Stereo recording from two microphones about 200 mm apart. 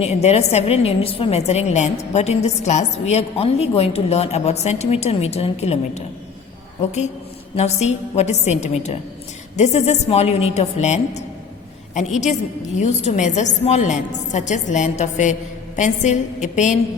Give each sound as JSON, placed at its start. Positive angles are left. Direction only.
{"t": 0.0, "sound": "a woman's voice", "side_deg": 35}
{"t": 7.5, "sound": "a woman's voice", "side_deg": 35}